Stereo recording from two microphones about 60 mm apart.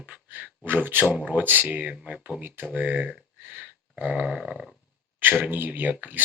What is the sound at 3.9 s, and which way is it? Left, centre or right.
Dog, centre.